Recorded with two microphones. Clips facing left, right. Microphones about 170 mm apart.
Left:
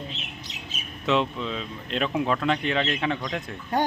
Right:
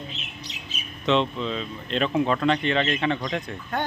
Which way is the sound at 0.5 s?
50° left (ahead or behind).